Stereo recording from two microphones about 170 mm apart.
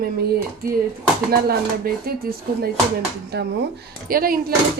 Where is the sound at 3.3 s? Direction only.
80° right.